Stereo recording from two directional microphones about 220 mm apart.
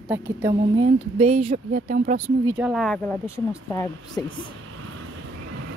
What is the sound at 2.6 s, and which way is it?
Speech, centre (ahead or behind).